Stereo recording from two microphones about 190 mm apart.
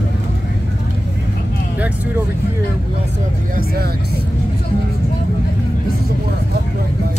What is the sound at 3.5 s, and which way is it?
Speech, 55° right (ahead or behind).